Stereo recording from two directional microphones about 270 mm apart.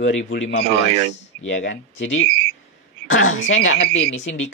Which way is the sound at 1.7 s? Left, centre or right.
Left.